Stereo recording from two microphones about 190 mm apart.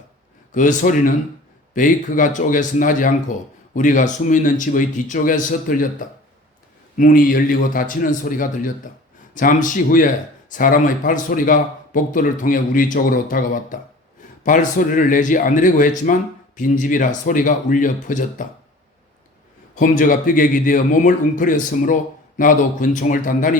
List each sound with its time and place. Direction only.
0.5 s a man's voice: 40° left (ahead or behind)
6.9 s a man's voice: 45° left (ahead or behind)
19.7 s a man's voice: 45° left (ahead or behind)